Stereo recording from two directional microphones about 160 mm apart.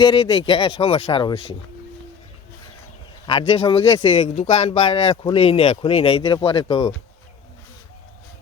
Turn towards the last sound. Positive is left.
turn(degrees=25)  # may be behind; listen again after turning